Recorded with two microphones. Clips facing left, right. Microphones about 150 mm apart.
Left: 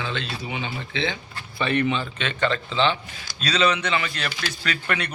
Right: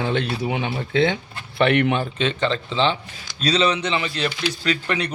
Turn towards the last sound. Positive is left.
turn(degrees=-25)  # may be behind; listen again after turning